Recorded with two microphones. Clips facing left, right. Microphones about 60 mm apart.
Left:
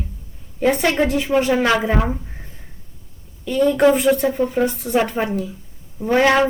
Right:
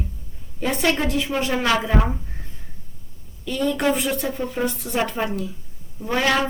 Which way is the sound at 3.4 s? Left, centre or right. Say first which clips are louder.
Left 7 dB; left.